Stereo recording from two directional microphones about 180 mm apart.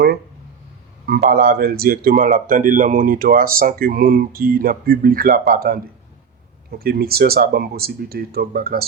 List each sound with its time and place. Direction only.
1.0 s speech: 60° right (ahead or behind)